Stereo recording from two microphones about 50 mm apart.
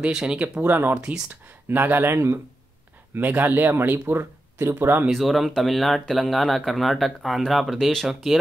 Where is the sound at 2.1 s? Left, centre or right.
Right.